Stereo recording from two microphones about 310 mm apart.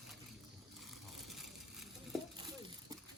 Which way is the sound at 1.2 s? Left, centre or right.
Centre.